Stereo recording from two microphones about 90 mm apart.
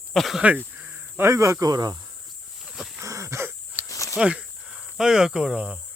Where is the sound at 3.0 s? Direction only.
35° right (ahead or behind).